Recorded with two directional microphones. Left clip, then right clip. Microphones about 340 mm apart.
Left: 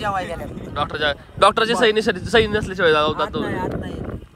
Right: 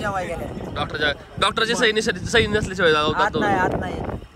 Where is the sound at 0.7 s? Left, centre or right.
Centre.